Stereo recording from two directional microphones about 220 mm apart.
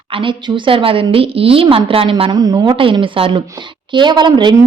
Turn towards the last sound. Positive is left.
turn(degrees=-20)  # may be behind; listen again after turning